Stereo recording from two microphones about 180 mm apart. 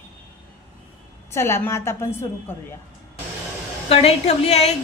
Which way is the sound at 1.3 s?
15° left (ahead or behind).